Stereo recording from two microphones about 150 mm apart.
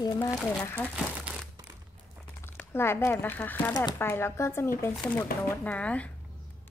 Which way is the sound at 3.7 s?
25° left (ahead or behind).